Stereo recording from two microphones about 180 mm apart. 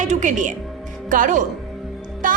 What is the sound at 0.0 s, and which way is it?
A woman's voice, 45° right (ahead or behind).